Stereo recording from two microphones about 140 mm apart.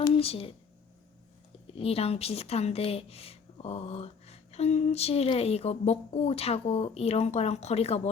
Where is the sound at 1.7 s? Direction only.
45° left (ahead or behind).